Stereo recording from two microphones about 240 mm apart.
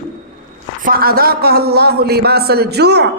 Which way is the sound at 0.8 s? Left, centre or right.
Right.